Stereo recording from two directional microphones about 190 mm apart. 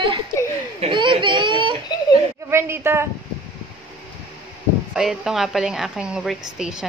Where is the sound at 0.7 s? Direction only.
25° right (ahead or behind).